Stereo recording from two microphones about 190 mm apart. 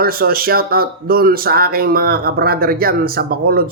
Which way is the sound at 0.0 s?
50° right (ahead or behind).